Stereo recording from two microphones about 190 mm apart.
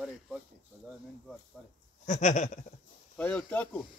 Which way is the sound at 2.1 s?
40° left (ahead or behind).